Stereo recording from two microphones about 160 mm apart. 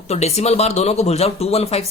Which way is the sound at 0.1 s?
40° left (ahead or behind).